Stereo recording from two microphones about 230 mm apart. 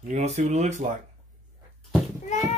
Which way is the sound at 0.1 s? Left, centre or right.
Right.